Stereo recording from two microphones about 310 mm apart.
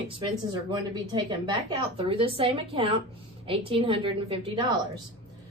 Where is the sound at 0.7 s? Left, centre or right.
Centre.